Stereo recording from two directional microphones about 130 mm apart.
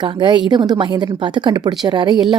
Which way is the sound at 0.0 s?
35° right (ahead or behind).